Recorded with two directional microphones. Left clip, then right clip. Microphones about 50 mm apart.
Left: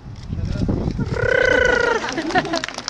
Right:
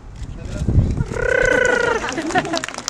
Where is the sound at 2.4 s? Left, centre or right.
Centre.